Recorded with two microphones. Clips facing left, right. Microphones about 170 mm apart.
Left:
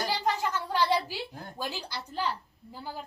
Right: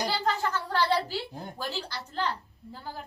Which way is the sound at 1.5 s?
15° left (ahead or behind).